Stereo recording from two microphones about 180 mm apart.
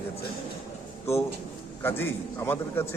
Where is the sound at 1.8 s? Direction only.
10° left (ahead or behind).